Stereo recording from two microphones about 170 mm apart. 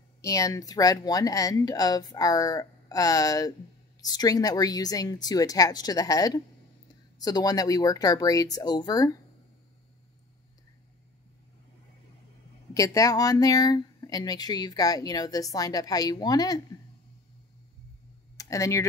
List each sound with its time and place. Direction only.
0.2 s speech: 20° left (ahead or behind)
12.7 s speech: 20° left (ahead or behind)
18.4 s speech: 20° left (ahead or behind)